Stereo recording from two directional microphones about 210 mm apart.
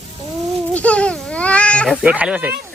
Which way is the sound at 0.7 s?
5° left (ahead or behind).